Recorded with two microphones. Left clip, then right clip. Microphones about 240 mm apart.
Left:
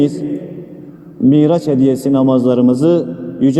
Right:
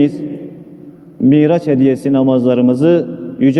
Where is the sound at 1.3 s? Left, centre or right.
Right.